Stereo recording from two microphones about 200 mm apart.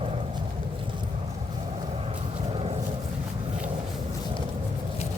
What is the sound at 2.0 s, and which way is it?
Vehicle, 30° right (ahead or behind).